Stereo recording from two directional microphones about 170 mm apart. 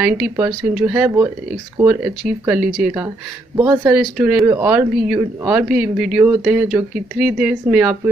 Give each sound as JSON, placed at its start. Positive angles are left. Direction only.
{"t": 0.0, "sound": "speech", "side_deg": -5}
{"t": 3.9, "sound": "speech", "side_deg": -5}